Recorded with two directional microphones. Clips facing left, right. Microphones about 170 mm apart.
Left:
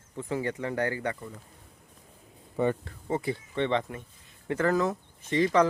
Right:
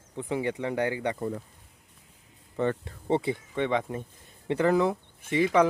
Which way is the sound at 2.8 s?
25° right (ahead or behind).